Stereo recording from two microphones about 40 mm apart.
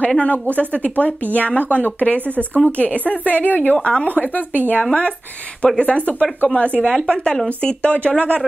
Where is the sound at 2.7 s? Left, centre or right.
Left.